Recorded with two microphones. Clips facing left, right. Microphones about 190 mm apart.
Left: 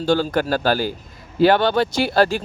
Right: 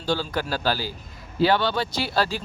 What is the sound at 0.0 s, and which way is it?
Speech, 50° left (ahead or behind).